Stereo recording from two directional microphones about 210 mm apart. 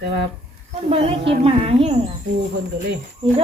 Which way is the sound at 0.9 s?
30° right (ahead or behind).